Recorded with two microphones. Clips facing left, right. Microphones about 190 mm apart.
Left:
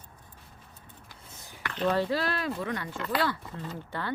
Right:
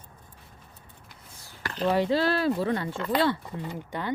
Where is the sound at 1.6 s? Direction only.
35° right (ahead or behind).